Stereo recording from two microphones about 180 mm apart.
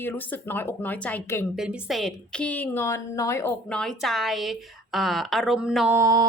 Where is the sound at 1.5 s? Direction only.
Centre (ahead or behind); by 3.5 s 15° left (ahead or behind).